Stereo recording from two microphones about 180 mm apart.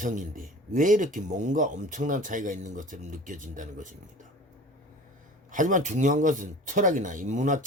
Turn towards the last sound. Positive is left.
turn(degrees=-45)  # may be behind; listen again after turning